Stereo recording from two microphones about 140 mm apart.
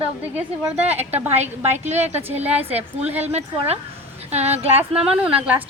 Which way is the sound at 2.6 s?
45° right (ahead or behind).